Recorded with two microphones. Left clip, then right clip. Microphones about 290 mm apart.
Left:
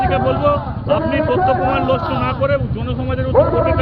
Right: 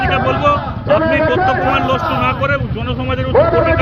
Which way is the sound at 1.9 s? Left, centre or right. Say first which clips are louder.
Right 3 dB; centre.